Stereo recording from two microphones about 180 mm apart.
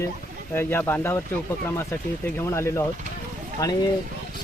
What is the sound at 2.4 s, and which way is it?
Speech, 15° left (ahead or behind).